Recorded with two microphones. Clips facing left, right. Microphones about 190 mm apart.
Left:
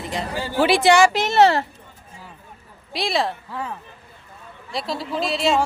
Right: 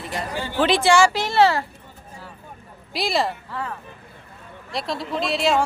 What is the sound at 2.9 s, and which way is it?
Speech, centre (ahead or behind).